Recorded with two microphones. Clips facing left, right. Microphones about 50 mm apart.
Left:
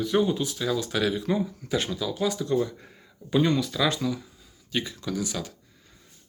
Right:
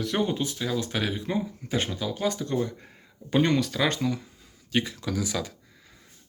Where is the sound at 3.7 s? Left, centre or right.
Right.